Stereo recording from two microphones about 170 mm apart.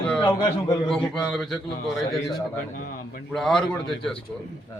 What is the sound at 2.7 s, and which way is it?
Speech, 55° left (ahead or behind).